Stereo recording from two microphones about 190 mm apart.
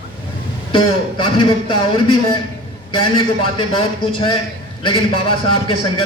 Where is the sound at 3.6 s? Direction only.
25° left (ahead or behind).